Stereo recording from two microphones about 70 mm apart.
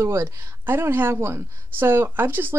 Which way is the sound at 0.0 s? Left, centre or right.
Right.